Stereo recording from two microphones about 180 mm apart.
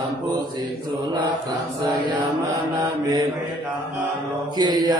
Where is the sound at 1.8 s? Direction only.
25° right (ahead or behind).